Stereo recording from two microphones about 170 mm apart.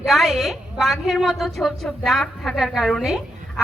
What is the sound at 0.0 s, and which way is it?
A woman's voice, centre (ahead or behind).